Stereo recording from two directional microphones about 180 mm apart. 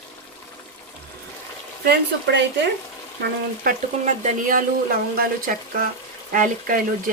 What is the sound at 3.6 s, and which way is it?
Speech, 50° right (ahead or behind).